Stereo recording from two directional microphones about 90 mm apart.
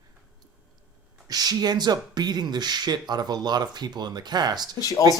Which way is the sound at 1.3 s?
45° right (ahead or behind).